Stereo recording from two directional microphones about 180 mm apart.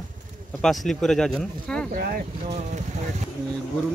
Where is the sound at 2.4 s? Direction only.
35° right (ahead or behind).